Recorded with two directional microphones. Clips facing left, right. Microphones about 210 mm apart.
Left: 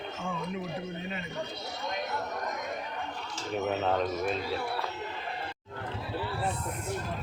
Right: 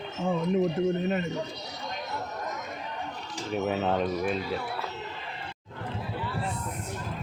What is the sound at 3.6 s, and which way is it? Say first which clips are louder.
Speech: right 2 dB; 5° right (ahead or behind).